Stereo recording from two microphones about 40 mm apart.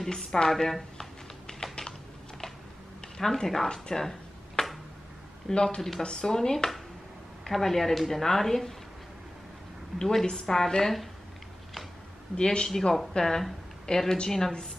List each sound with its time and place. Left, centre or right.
0.0 s a woman's voice: centre
1.5 s typing: centre
3.2 s a woman's voice: centre
3.6 s a sound: centre
5.5 s speech: left
5.8 s speech: centre
6.0 s a woman's voice: centre
9.9 s a woman's voice: centre
12.4 s speech: left
12.6 s a woman's voice: centre